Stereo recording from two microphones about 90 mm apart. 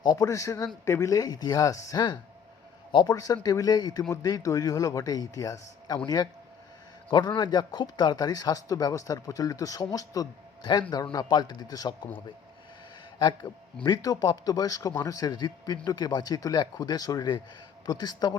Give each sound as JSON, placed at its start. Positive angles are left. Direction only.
{"t": 0.0, "sound": "speech", "side_deg": 40}
{"t": 2.9, "sound": "speech", "side_deg": 55}
{"t": 3.4, "sound": "speech", "side_deg": 45}
{"t": 7.1, "sound": "speech", "side_deg": 55}
{"t": 11.1, "sound": "speech", "side_deg": 50}
{"t": 13.1, "sound": "a man's voice", "side_deg": 55}